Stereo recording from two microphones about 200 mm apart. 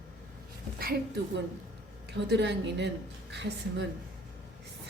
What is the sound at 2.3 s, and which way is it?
Speech, 60° right (ahead or behind).